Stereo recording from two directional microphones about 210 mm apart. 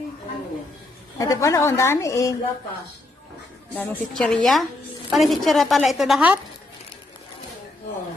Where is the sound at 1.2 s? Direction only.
15° left (ahead or behind).